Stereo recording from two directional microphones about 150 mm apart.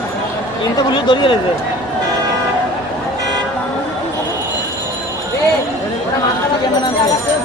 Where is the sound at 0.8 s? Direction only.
30° left (ahead or behind).